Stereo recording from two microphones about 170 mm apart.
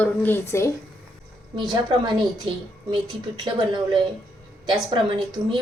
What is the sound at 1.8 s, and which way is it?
Speech, 25° right (ahead or behind).